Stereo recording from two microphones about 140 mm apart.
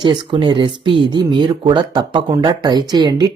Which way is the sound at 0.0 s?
35° right (ahead or behind).